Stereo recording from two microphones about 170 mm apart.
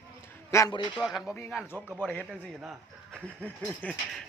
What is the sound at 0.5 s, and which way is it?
Speech, 20° left (ahead or behind).